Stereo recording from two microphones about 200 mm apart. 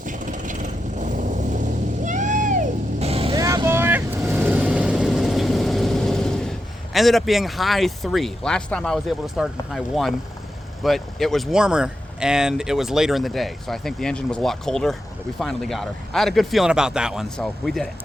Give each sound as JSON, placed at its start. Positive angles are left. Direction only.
{"t": 0.0, "sound": "vehicle", "side_deg": -40}
{"t": 3.3, "sound": "vehicle", "side_deg": -15}
{"t": 6.9, "sound": "speech", "side_deg": 0}